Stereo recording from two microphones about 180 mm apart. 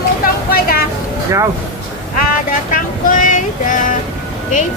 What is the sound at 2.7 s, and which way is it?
A child's voice, 50° left (ahead or behind).